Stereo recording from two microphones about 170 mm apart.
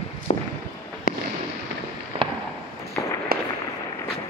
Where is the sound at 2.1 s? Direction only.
40° right (ahead or behind).